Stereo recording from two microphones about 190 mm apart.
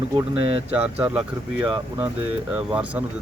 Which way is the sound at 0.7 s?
10° right (ahead or behind).